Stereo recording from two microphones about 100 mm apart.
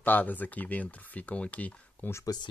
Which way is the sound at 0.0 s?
15° left (ahead or behind).